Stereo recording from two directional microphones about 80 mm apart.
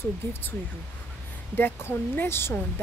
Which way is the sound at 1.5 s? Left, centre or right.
Left.